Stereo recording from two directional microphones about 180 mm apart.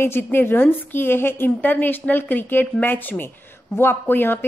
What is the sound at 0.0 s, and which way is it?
A woman's voice, 10° left (ahead or behind).